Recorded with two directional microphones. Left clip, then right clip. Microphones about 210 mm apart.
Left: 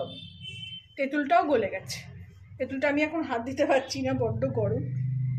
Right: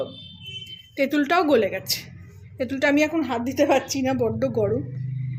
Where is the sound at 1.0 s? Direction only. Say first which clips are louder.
Right 3 dB; 55° right (ahead or behind).